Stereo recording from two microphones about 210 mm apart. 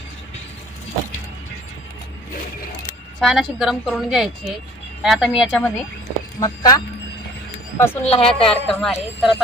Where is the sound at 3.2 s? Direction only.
Centre (ahead or behind).